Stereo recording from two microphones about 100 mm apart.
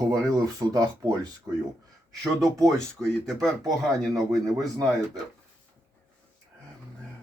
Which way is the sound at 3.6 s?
40° right (ahead or behind).